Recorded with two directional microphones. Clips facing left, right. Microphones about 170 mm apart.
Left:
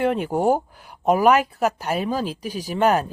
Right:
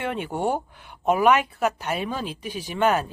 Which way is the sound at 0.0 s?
35° left (ahead or behind).